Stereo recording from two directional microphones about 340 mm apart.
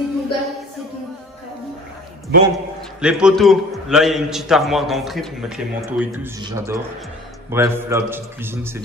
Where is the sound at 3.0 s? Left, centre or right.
Centre.